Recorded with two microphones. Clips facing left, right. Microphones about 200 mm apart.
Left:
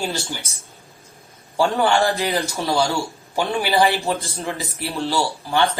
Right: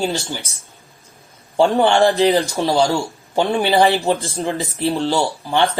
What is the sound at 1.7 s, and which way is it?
Speech, 15° right (ahead or behind).